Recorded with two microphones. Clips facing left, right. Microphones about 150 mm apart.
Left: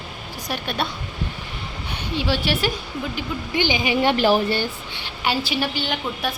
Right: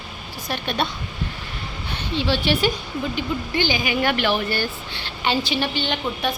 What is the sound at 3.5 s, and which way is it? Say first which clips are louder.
A woman's voice: left 4 dB; 15° left (ahead or behind).